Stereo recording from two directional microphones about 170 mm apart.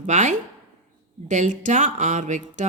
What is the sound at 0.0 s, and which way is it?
A woman's voice, 45° right (ahead or behind).